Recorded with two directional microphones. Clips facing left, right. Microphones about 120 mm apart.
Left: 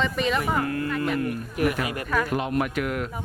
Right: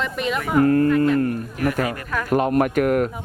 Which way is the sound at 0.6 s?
45° right (ahead or behind).